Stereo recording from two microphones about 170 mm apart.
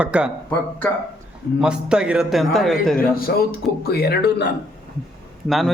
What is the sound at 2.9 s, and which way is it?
Speech, 60° left (ahead or behind).